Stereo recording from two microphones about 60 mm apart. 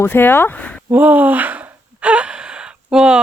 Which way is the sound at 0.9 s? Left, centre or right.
Right.